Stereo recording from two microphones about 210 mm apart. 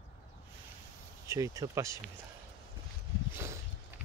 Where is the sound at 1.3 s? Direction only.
15° right (ahead or behind).